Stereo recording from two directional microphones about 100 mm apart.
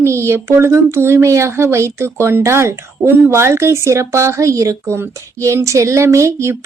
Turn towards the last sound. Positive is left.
turn(degrees=-30)  # may be behind; listen again after turning